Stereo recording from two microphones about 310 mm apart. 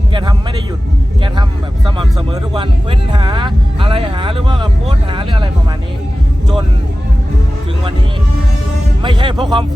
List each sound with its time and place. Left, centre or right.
0.1 s music: centre
3.1 s music: centre
9.0 s music: centre